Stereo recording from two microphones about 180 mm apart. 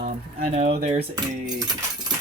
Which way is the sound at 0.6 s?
35° right (ahead or behind).